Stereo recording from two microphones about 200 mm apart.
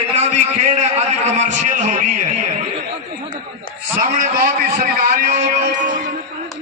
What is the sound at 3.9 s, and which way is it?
A man's voice, 40° right (ahead or behind).